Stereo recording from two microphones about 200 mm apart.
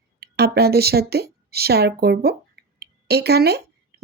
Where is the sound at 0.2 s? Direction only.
55° right (ahead or behind).